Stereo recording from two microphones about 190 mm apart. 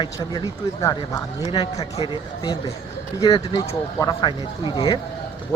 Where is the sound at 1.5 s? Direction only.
30° left (ahead or behind).